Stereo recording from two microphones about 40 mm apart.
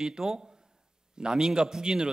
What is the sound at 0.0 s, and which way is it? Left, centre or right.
A man's voice, centre.